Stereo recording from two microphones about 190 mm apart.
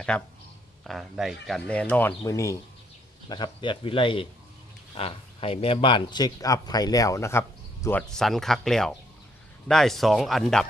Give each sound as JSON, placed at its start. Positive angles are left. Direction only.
{"t": 0.9, "sound": "speech", "side_deg": 0}